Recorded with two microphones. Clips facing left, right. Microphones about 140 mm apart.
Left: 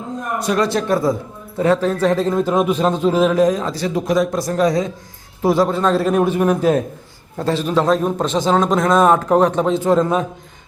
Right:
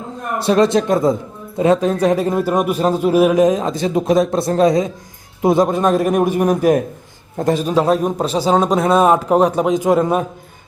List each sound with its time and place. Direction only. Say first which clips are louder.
0.3 s a man's voice: right 5 dB; 25° right (ahead or behind); by 10.2 s 10° right (ahead or behind)